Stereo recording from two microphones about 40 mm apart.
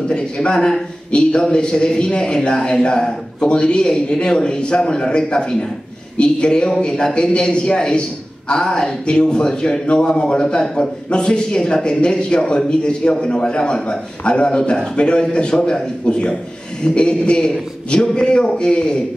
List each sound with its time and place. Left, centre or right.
0.1 s a man's voice: left